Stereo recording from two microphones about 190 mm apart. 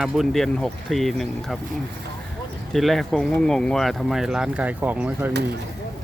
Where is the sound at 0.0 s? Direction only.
Centre (ahead or behind).